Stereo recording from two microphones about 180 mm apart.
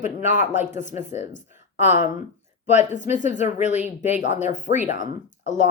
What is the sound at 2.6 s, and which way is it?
Speech, 40° left (ahead or behind).